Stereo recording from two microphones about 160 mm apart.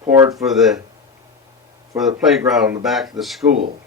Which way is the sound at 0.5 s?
Centre (ahead or behind).